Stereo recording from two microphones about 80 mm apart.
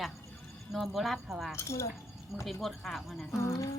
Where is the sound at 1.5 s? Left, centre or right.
Left.